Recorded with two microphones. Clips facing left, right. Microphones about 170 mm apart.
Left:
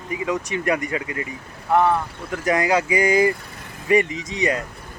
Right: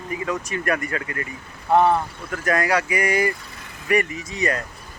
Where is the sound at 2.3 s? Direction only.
20° left (ahead or behind).